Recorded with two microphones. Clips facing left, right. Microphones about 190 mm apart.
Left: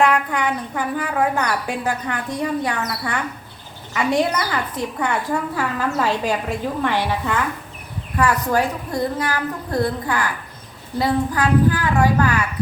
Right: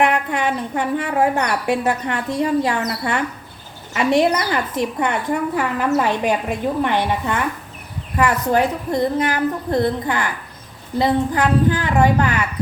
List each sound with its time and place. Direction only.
0.0 s a woman's voice: 20° right (ahead or behind)